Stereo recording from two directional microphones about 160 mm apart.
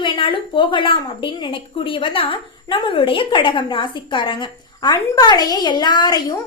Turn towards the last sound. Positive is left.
turn(degrees=25)  # may be behind; listen again after turning